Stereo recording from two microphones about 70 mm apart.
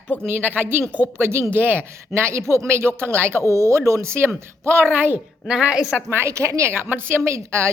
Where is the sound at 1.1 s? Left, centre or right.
Right.